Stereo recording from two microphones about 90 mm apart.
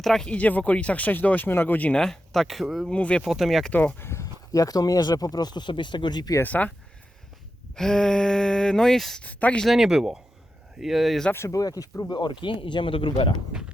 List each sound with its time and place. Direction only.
0.0 s speech: 5° left (ahead or behind)
2.0 s speech: 5° left (ahead or behind)
2.9 s speech: 15° left (ahead or behind)
3.2 s speech: centre (ahead or behind)
3.7 s speech: 15° left (ahead or behind); by 6.3 s 55° left (ahead or behind)
6.4 s speech: 20° left (ahead or behind)
7.8 s speech: 10° left (ahead or behind)
9.2 s speech: 15° left (ahead or behind)
9.6 s speech: 5° right (ahead or behind)
11.3 s speech: 30° left (ahead or behind); by 13.3 s 75° left (ahead or behind)